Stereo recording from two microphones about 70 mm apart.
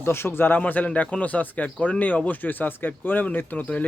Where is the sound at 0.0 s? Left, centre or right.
Left.